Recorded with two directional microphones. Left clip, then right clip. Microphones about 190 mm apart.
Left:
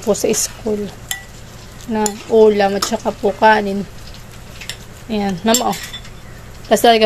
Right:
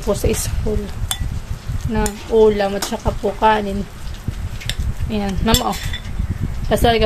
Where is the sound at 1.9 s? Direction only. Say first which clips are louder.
Left 3 dB; 15° left (ahead or behind).